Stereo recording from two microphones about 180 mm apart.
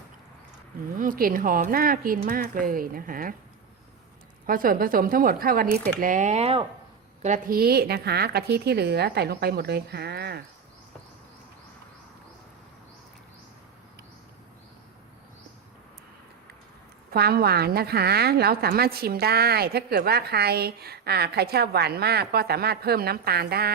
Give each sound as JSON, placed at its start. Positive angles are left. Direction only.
{"t": 0.9, "sound": "speech", "side_deg": -50}
{"t": 4.4, "sound": "speech", "side_deg": -50}
{"t": 7.2, "sound": "a woman's voice", "side_deg": -45}
{"t": 17.1, "sound": "a woman's voice", "side_deg": -60}